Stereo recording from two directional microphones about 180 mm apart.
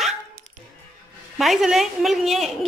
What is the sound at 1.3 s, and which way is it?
A woman's voice, centre (ahead or behind).